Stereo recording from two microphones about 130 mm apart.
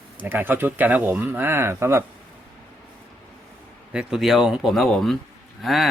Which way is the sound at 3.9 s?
5° right (ahead or behind).